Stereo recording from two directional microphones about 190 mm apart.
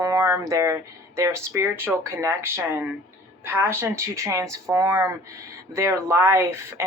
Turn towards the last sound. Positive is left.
turn(degrees=-15)  # may be behind; listen again after turning